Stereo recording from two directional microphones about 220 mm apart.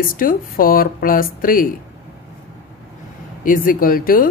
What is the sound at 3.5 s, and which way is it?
Speech, 40° left (ahead or behind).